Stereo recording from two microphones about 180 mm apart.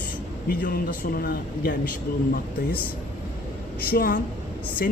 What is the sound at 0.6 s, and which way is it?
A man's voice, 55° left (ahead or behind).